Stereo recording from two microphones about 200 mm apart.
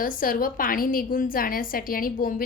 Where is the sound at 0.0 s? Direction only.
45° left (ahead or behind).